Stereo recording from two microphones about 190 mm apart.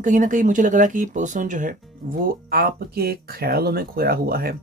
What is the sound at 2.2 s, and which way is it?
Speech, 50° right (ahead or behind).